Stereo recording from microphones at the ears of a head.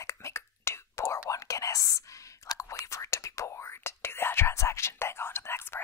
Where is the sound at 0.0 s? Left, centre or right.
Left.